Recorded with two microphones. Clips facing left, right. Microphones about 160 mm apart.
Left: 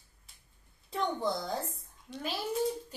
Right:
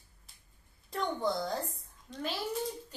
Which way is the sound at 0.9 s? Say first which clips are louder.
Even; centre (ahead or behind).